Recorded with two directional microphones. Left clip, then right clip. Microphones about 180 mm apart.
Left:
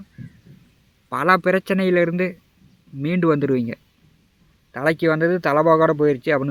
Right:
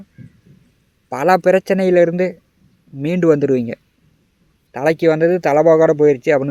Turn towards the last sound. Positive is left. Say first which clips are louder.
# right 6 dB
turn(degrees=-25)  # may be behind; listen again after turning